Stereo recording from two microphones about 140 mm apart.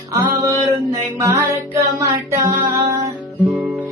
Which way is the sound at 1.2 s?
20° right (ahead or behind).